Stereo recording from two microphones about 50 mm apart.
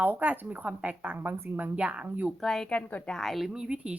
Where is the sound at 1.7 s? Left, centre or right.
Right.